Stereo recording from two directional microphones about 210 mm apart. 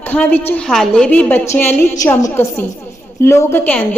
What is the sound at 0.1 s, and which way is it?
A woman's voice, 10° left (ahead or behind).